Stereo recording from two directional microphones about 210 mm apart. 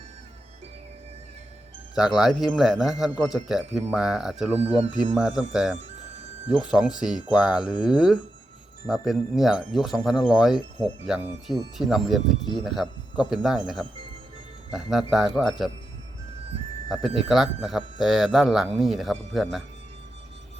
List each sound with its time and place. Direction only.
2.0 s speech: 5° right (ahead or behind)
4.6 s speech: 30° right (ahead or behind)
5.4 s speech: 5° right (ahead or behind)
14.7 s speech: centre (ahead or behind)
17.0 s speech: centre (ahead or behind)